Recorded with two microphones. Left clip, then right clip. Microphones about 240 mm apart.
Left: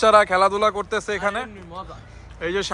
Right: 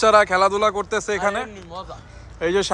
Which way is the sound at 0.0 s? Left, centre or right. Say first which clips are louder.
Even; centre.